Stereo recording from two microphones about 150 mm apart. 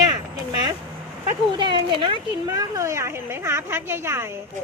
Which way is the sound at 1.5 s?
30° right (ahead or behind).